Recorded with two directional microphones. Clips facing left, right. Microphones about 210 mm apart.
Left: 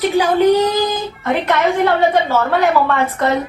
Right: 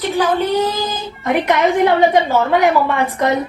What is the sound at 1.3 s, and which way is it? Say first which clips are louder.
A woman's voice: right 1 dB; 15° right (ahead or behind).